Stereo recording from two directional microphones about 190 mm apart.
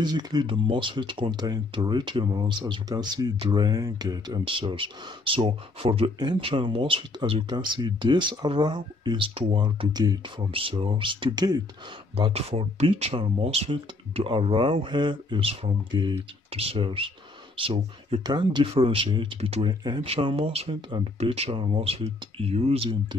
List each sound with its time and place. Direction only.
0.0 s speech: 20° right (ahead or behind)
12.2 s speech: 30° right (ahead or behind)